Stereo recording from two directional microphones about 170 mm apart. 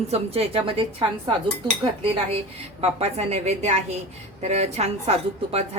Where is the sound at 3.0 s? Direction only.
40° right (ahead or behind).